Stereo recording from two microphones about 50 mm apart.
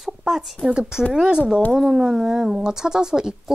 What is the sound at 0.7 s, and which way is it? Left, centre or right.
A woman's voice, centre.